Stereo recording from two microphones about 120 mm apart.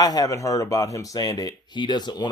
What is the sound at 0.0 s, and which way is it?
Speech, 30° left (ahead or behind).